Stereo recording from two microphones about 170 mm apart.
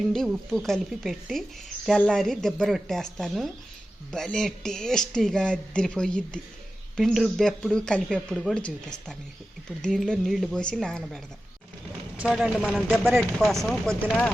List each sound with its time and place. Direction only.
0.0 s speech: centre (ahead or behind)